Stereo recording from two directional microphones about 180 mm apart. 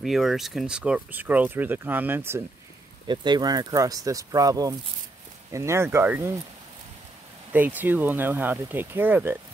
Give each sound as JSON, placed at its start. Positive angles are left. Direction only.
{"t": 0.0, "sound": "speech", "side_deg": 0}
{"t": 3.1, "sound": "speech", "side_deg": -25}
{"t": 7.5, "sound": "speech", "side_deg": -10}